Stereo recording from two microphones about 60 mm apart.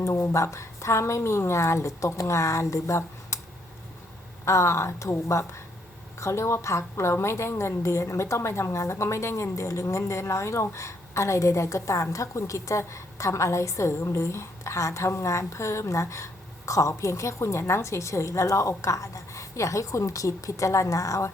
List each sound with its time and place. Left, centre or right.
0.0 s a woman's voice: left
4.4 s a woman's voice: left